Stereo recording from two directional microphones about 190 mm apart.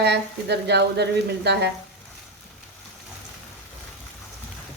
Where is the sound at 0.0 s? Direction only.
60° right (ahead or behind).